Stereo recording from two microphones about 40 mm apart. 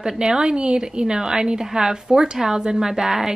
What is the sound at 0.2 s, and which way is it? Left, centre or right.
A woman's voice, centre.